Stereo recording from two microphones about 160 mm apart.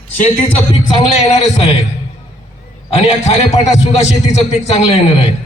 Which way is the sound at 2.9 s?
40° left (ahead or behind).